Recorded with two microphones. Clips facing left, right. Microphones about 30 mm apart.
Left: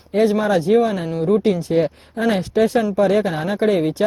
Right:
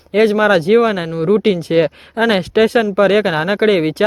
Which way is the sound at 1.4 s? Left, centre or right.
Right.